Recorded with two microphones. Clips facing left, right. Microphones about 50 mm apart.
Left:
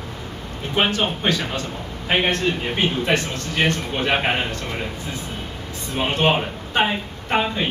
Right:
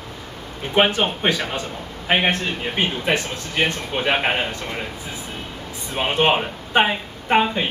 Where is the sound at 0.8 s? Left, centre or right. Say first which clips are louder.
Right 3 dB; centre.